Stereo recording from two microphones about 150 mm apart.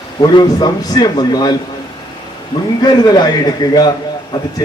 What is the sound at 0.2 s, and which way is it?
A man's voice, 30° left (ahead or behind).